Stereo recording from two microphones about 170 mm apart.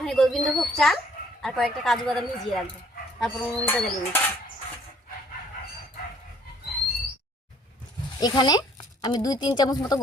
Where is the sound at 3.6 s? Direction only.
15° left (ahead or behind).